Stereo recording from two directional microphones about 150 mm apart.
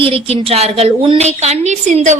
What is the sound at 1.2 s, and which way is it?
Speech, 50° right (ahead or behind).